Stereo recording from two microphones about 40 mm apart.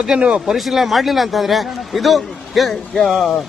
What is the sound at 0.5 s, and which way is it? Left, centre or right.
A man's voice, centre.